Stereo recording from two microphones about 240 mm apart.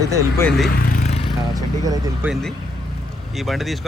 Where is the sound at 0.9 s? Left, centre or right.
Left.